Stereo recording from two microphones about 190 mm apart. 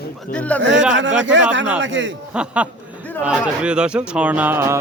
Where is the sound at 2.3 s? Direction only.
5° right (ahead or behind).